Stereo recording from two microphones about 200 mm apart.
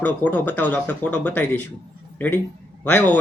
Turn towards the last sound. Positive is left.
turn(degrees=10)  # may be behind; listen again after turning